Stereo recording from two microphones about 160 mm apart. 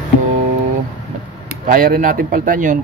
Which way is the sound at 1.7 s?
60° right (ahead or behind).